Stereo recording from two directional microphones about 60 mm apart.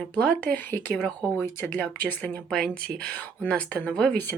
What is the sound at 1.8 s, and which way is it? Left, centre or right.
Speech, left.